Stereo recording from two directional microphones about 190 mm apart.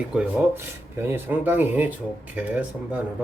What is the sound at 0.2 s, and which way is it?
Speech, 10° right (ahead or behind).